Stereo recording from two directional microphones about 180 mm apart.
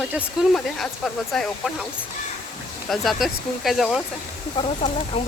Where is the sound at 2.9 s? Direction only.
Centre (ahead or behind).